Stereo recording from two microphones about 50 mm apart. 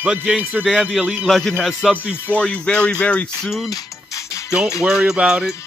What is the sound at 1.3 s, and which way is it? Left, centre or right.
Speech, centre.